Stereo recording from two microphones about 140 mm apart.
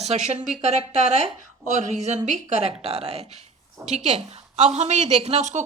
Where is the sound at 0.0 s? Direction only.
50° right (ahead or behind).